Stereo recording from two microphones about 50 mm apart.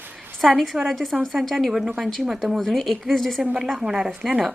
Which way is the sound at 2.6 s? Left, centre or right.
Centre.